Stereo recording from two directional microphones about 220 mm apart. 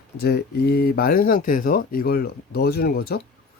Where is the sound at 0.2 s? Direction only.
45° left (ahead or behind).